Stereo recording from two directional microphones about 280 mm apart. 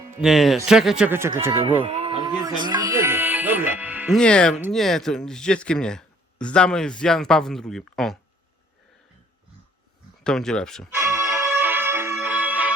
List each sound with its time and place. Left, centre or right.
0.2 s speech: centre; by 2.3 s right
2.3 s speech: centre
2.6 s music: centre
4.6 s speech: centre
10.2 s speech: centre
11.1 s music: centre